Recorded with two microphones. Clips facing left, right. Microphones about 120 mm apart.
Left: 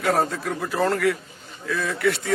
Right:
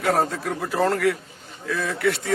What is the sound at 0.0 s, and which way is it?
Speech, 35° right (ahead or behind).